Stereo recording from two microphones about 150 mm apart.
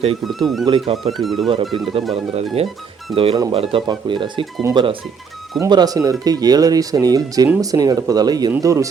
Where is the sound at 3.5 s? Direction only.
40° right (ahead or behind).